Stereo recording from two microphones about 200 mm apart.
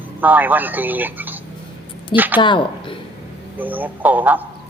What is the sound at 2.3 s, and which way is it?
Speech, 25° left (ahead or behind).